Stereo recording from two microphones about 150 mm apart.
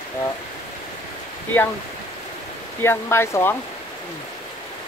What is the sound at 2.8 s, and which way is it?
Speech, 15° left (ahead or behind).